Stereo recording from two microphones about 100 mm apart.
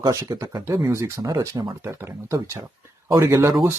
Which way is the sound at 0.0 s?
40° right (ahead or behind).